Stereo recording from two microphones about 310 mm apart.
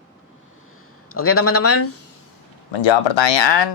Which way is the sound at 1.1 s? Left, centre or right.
Left.